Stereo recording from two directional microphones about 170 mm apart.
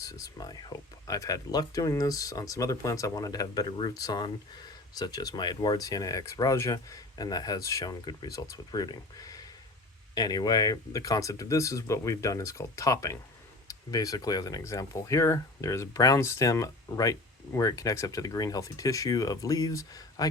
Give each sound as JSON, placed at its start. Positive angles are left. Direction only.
{"t": 0.0, "sound": "speech", "side_deg": 20}